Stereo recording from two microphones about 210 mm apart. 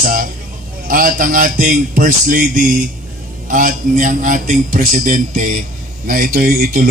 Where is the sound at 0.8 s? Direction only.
40° right (ahead or behind).